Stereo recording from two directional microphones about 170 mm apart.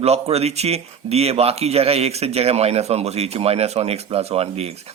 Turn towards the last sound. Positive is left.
turn(degrees=-40)  # may be behind; listen again after turning